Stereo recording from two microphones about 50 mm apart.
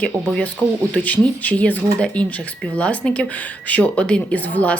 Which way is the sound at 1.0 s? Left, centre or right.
Left.